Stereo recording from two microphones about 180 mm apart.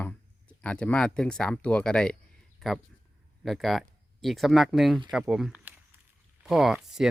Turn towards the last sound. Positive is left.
turn(degrees=0)  # may be behind; listen again after turning